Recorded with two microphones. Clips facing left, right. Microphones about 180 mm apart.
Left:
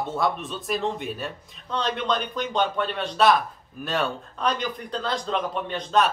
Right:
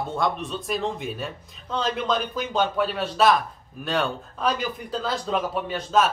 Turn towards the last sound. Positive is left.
turn(degrees=-5)  # may be behind; listen again after turning